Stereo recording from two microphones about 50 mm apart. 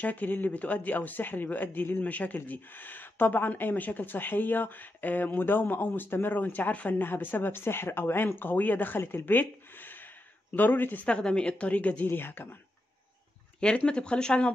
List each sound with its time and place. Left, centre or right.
0.0 s speech: left
11.1 s a woman's voice: centre
12.1 s speech: left
13.6 s a woman's voice: centre